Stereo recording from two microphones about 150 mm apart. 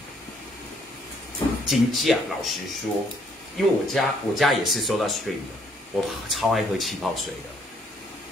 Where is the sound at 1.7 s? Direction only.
Centre (ahead or behind).